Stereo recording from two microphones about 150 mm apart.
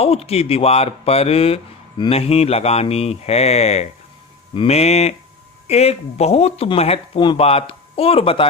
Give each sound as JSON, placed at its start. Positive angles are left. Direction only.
{"t": 0.0, "sound": "speech", "side_deg": 40}